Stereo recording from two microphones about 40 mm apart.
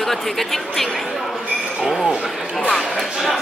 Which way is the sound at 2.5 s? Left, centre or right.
Centre.